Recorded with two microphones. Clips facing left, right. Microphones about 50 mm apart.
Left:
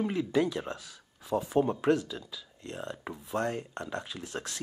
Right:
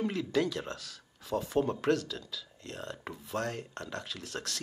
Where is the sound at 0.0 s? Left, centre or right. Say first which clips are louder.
Left 2 dB; centre.